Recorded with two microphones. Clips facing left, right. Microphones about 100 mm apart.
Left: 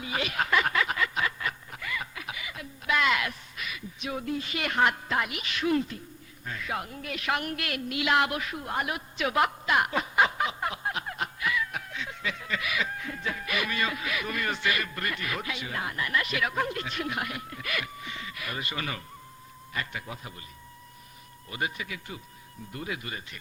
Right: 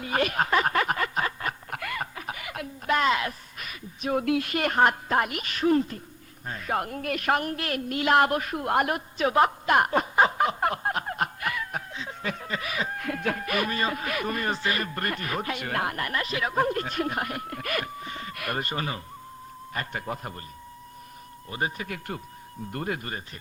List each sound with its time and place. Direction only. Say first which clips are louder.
0.0 s music: right 5 dB; 50° right (ahead or behind)
1.7 s a sound: right 4 dB; 60° right (ahead or behind)
2.1 s a sound: right 4 dB; 45° right (ahead or behind)
4.3 s speech: right 6 dB; 70° right (ahead or behind)
4.5 s speech: right 2 dB; 45° right (ahead or behind)
9.6 s a sound: right 4 dB; 45° right (ahead or behind)
13.0 s speech: right 6 dB; 65° right (ahead or behind)
16.1 s speech: right 1 dB; 35° right (ahead or behind); by 20.4 s 50° right (ahead or behind)
21.5 s speech: right 3 dB; 35° right (ahead or behind)
21.8 s speech: right 5 dB; 55° right (ahead or behind)